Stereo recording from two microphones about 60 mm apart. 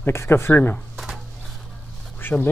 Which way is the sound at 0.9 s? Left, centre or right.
Centre.